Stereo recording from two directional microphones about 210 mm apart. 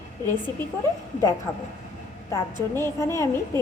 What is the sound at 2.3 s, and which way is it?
Speech, 15° left (ahead or behind).